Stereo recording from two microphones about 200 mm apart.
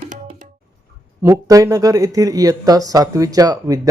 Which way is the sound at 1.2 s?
15° right (ahead or behind).